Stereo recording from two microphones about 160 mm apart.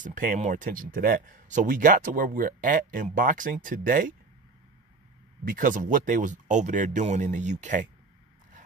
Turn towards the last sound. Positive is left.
turn(degrees=-50)  # may be behind; listen again after turning